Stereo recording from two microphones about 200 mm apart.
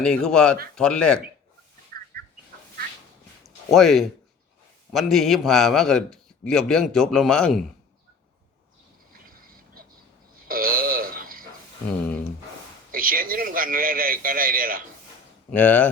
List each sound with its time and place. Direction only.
0.0 s a man's voice: 5° left (ahead or behind)
3.7 s a man's voice: centre (ahead or behind)
9.1 s a sound: 45° right (ahead or behind)
12.9 s speech: 45° right (ahead or behind)
15.4 s speech: 10° left (ahead or behind)